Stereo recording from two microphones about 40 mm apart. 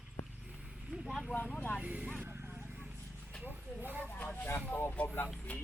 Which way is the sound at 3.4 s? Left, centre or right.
Right.